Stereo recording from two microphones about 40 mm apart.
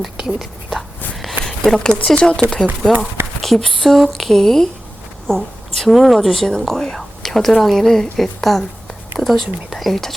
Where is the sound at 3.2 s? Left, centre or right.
Right.